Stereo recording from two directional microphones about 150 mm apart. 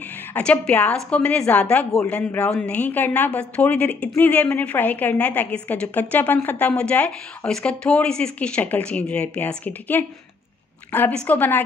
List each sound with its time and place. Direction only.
0.3 s a woman's voice: 5° left (ahead or behind)